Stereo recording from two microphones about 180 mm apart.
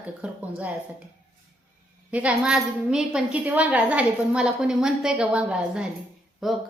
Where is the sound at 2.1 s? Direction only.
5° right (ahead or behind).